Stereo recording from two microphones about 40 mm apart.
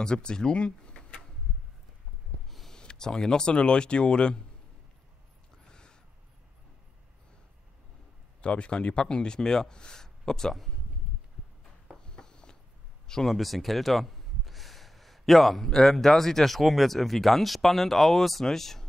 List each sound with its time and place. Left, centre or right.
0.0 s speech: left
2.7 s speech: centre
5.7 s a sound: left
8.4 s speech: left
12.1 s a sound: centre
13.1 s speech: centre
13.4 s speech: centre